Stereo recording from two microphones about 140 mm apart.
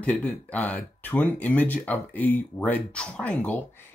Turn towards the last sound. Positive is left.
turn(degrees=10)  # may be behind; listen again after turning